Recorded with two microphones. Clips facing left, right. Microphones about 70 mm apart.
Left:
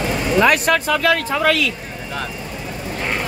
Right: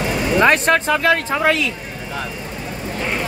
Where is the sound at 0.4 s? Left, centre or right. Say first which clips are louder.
Right 1 dB; right.